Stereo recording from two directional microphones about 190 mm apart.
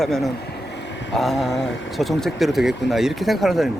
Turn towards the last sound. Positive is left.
turn(degrees=0)  # may be behind; listen again after turning